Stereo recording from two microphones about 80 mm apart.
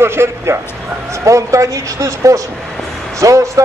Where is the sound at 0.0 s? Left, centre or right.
Right.